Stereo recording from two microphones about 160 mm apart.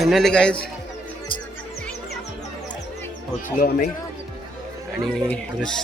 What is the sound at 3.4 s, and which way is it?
Speech, 65° left (ahead or behind).